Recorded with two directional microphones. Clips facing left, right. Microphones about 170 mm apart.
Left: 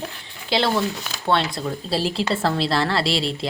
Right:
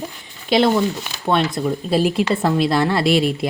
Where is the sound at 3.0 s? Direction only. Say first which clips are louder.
Right 7 dB; 30° left (ahead or behind).